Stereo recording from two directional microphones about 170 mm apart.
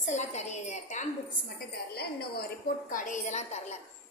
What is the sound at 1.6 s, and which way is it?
Speech, 65° left (ahead or behind).